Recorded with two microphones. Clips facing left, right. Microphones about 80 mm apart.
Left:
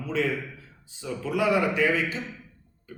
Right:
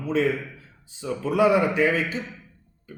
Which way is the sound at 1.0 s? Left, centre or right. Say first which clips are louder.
Right 5 dB; right.